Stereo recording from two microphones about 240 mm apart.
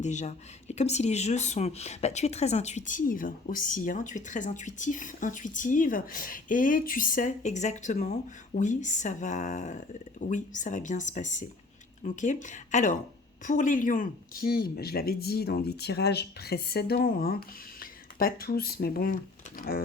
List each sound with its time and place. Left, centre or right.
0.0 s speech: left